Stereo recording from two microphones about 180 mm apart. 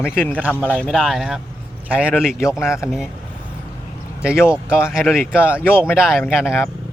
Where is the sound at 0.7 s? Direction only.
5° left (ahead or behind).